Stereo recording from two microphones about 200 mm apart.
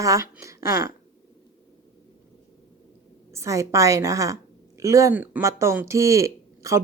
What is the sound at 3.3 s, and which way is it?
Speech, 15° right (ahead or behind).